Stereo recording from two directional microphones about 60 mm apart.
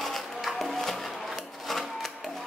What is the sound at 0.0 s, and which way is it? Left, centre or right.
Music, centre.